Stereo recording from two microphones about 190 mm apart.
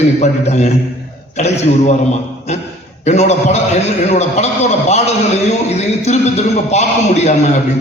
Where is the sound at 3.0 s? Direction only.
35° left (ahead or behind).